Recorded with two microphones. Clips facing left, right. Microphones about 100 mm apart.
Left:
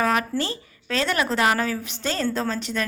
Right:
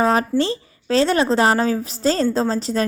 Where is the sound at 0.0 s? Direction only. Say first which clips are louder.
Right 5 dB; 30° right (ahead or behind).